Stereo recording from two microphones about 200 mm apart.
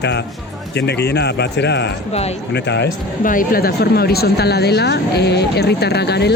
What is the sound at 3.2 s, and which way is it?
A woman's voice, 45° left (ahead or behind).